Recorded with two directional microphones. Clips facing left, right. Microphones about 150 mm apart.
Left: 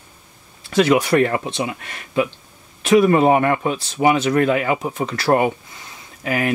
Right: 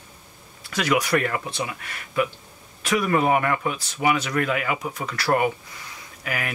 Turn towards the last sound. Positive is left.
turn(degrees=30)  # may be behind; listen again after turning